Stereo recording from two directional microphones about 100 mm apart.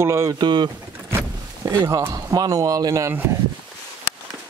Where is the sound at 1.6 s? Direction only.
35° right (ahead or behind).